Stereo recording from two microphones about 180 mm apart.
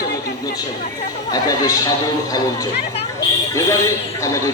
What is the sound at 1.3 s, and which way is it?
Speech, 20° left (ahead or behind).